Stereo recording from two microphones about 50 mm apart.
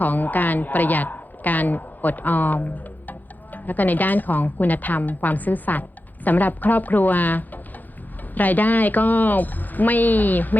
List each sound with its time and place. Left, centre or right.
0.0 s a woman's voice: left